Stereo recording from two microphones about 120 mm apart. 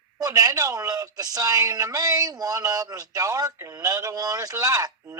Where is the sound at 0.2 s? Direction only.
30° right (ahead or behind).